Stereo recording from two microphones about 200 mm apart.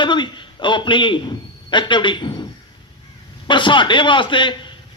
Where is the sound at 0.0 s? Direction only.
25° left (ahead or behind).